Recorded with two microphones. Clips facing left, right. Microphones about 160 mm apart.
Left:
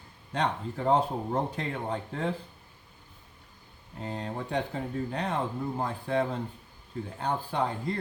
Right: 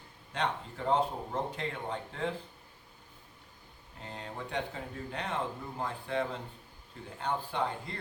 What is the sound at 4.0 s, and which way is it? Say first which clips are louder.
Speech: left 7 dB; 40° left (ahead or behind).